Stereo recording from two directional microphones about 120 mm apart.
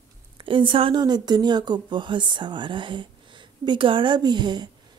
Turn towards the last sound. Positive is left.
turn(degrees=-40)  # may be behind; listen again after turning